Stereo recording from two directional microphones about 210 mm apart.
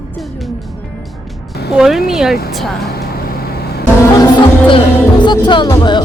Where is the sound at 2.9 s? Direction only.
45° left (ahead or behind).